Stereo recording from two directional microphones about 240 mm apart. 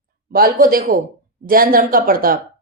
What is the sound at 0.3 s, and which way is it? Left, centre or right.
A woman's voice, right.